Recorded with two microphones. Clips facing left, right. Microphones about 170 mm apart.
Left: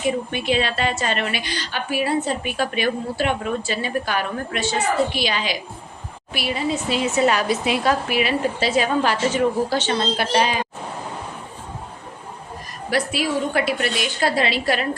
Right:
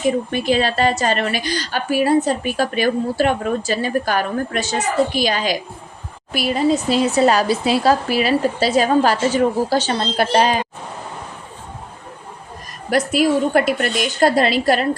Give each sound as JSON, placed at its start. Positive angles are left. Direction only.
{"t": 0.0, "sound": "a woman's voice", "side_deg": -40}
{"t": 12.9, "sound": "a woman's voice", "side_deg": -45}